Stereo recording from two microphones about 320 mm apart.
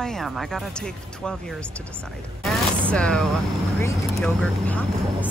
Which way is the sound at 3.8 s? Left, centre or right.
Centre.